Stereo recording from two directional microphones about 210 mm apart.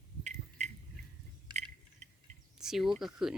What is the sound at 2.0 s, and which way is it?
Cricket, 35° right (ahead or behind).